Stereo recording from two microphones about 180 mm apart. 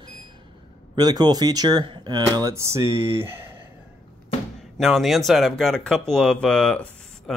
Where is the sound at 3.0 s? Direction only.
30° right (ahead or behind).